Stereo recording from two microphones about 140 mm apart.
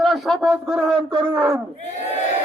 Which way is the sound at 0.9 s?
40° right (ahead or behind).